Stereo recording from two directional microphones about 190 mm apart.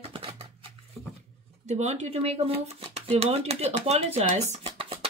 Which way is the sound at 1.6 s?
35° right (ahead or behind).